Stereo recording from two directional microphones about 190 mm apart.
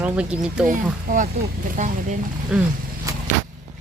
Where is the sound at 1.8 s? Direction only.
40° right (ahead or behind).